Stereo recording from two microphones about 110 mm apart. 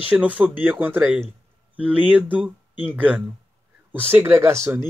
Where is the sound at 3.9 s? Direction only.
20° right (ahead or behind).